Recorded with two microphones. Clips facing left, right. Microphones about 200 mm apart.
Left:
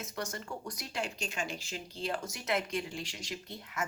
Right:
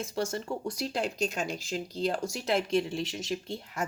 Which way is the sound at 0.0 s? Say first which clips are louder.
Right 8 dB; 25° right (ahead or behind).